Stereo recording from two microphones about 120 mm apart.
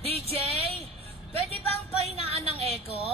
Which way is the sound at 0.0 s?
55° right (ahead or behind).